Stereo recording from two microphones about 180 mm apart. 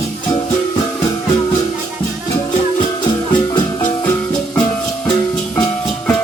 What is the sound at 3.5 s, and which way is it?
Music, 25° left (ahead or behind).